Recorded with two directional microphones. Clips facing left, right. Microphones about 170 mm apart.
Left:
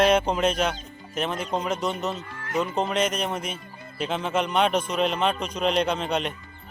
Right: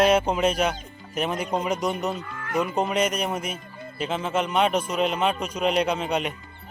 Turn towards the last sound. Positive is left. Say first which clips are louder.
# right 1 dB
turn(degrees=-10)  # may be behind; listen again after turning